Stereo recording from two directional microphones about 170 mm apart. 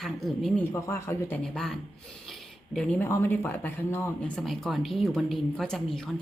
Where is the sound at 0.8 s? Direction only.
15° left (ahead or behind).